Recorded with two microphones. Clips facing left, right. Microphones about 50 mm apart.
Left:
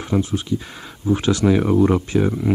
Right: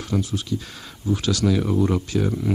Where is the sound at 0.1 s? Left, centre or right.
Left.